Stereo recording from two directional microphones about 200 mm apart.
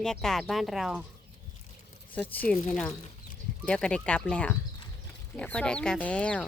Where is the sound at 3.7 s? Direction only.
5° left (ahead or behind).